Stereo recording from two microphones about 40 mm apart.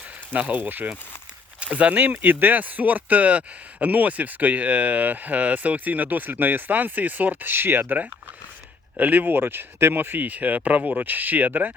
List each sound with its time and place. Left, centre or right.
0.3 s speech: right
1.5 s a sound: right
1.9 s speech: right
9.0 s speech: right
9.9 s speech: right
10.2 s speech: right